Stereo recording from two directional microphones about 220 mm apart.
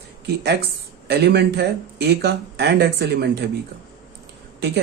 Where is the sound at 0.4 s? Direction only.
50° right (ahead or behind).